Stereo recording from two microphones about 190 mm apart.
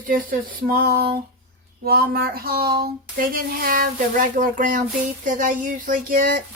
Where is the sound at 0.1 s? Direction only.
50° right (ahead or behind).